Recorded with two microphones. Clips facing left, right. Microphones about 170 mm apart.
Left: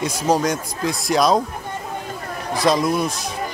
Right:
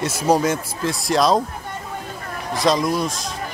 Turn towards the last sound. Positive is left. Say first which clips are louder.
# left 1 dB
turn(degrees=0)  # may be behind; listen again after turning